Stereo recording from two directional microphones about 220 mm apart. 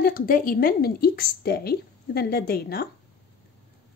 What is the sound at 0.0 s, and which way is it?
Speech, 40° left (ahead or behind).